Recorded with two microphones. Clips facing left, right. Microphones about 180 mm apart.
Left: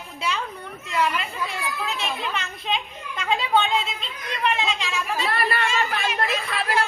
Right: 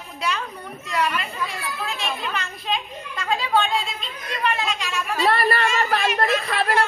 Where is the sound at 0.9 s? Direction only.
25° left (ahead or behind).